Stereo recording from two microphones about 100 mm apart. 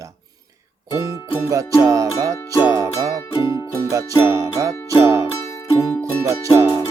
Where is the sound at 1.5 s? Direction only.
35° right (ahead or behind).